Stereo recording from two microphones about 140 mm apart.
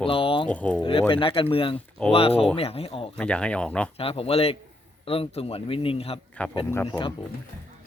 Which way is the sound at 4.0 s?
40° left (ahead or behind).